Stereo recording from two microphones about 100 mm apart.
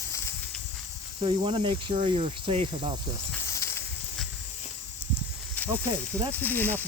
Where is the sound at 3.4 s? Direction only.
30° left (ahead or behind).